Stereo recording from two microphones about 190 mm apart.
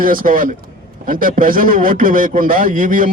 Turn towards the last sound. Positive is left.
turn(degrees=-45)  # may be behind; listen again after turning